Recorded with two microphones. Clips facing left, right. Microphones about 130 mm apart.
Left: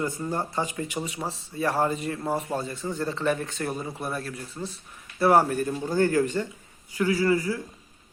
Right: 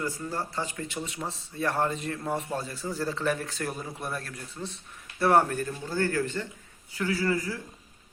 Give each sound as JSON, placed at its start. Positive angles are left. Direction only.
{"t": 0.0, "sound": "speech", "side_deg": 20}
{"t": 1.3, "sound": "a man's voice", "side_deg": 5}